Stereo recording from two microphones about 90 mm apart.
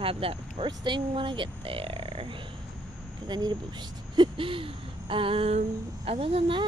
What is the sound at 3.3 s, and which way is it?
Speech, 50° right (ahead or behind).